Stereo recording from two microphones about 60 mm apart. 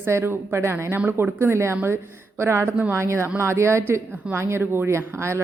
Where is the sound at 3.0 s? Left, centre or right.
Right.